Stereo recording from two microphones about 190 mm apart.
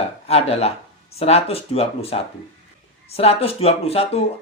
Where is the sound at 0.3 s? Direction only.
35° left (ahead or behind).